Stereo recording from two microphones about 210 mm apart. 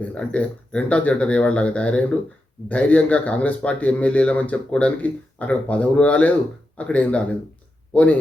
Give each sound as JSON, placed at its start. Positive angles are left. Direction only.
{"t": 0.0, "sound": "a man's voice", "side_deg": 5}